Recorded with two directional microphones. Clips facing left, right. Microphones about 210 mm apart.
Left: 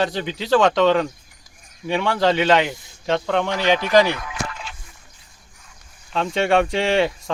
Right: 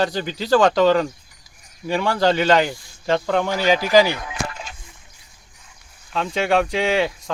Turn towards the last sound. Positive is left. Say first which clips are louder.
# left 1 dB
turn(degrees=0)  # may be behind; listen again after turning